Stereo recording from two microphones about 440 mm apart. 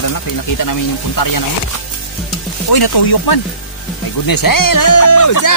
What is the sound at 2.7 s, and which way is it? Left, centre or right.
Speech, left.